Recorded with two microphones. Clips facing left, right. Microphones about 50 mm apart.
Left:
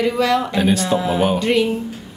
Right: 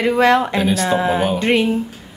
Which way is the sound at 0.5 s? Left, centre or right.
Centre.